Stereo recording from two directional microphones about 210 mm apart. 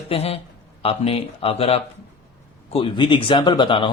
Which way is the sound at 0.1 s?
30° left (ahead or behind).